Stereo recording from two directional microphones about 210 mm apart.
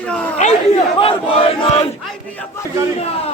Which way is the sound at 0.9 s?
25° left (ahead or behind).